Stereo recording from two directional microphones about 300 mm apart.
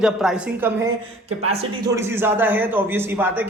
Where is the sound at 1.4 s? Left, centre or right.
Centre.